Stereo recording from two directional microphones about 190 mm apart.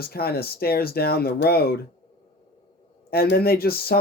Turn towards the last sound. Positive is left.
turn(degrees=55)  # may be behind; listen again after turning